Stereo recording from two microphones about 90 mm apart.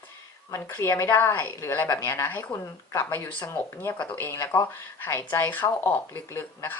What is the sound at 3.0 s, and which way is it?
Speech, 20° left (ahead or behind).